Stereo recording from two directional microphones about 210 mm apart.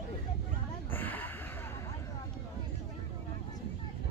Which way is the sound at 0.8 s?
10° left (ahead or behind).